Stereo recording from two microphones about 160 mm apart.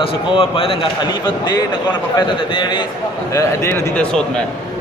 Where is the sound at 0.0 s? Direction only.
35° left (ahead or behind).